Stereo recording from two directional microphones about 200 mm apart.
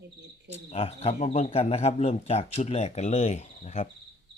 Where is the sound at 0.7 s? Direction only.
30° left (ahead or behind).